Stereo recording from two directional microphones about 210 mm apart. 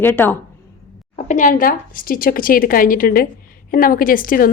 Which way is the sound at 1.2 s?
35° left (ahead or behind).